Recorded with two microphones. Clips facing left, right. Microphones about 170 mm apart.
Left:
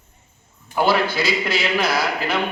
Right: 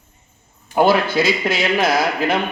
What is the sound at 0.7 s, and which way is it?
Speech, 50° right (ahead or behind).